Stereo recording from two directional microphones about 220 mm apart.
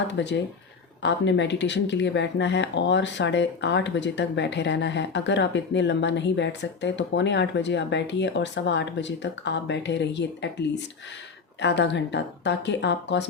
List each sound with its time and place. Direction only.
0.2 s speech: 55° left (ahead or behind)